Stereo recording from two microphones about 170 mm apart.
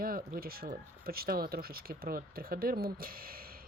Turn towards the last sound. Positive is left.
turn(degrees=-60)  # may be behind; listen again after turning